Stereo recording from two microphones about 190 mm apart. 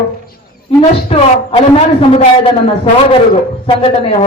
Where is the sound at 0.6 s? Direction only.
30° left (ahead or behind).